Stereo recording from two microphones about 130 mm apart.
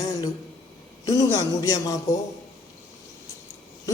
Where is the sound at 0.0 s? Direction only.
30° left (ahead or behind).